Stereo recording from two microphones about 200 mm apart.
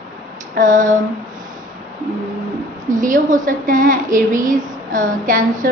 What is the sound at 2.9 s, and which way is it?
A woman's voice, 40° right (ahead or behind).